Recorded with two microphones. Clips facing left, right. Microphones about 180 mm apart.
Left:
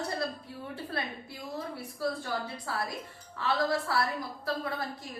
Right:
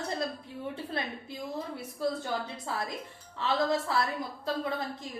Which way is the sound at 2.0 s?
20° right (ahead or behind).